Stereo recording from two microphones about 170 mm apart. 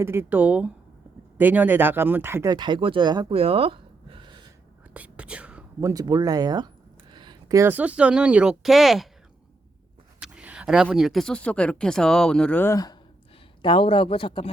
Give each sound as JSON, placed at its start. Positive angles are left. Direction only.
{"t": 0.0, "sound": "speech", "side_deg": -15}
{"t": 4.9, "sound": "whispering", "side_deg": -5}
{"t": 5.9, "sound": "speech", "side_deg": -25}
{"t": 10.2, "sound": "a sound", "side_deg": -5}
{"t": 10.8, "sound": "speech", "side_deg": 0}